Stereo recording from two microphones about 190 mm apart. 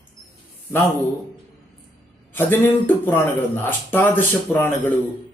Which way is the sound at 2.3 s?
10° left (ahead or behind).